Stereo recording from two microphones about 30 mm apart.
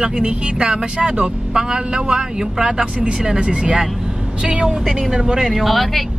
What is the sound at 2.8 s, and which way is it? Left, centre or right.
Speech, right.